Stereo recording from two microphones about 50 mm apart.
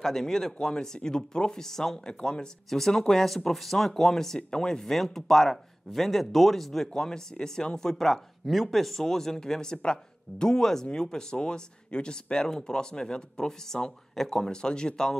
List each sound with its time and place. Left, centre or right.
0.0 s speech: centre